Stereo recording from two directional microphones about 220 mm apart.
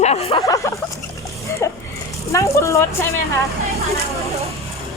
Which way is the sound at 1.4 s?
15° left (ahead or behind).